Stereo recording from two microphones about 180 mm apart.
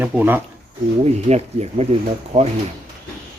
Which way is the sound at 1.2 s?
35° right (ahead or behind).